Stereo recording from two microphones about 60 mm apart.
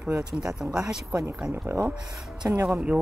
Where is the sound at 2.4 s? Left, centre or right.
Right.